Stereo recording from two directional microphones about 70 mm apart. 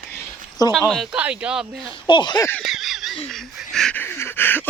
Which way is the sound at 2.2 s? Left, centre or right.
Left.